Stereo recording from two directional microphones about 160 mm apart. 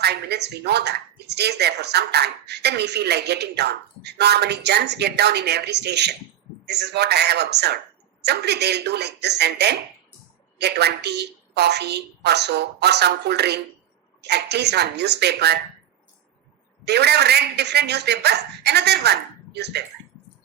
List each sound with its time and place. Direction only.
0.0 s speech: 90° right
16.8 s speech: 90° right